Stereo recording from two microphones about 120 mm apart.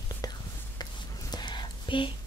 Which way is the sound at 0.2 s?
35° left (ahead or behind).